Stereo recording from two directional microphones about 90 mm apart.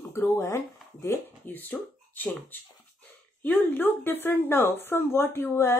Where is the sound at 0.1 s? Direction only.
35° left (ahead or behind).